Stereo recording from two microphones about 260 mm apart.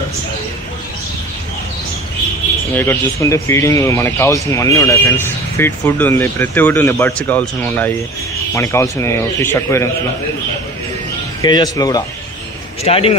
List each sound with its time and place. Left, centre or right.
2.7 s speech: centre
11.4 s a man's voice: centre